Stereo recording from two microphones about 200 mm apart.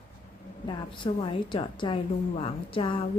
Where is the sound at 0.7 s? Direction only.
25° left (ahead or behind).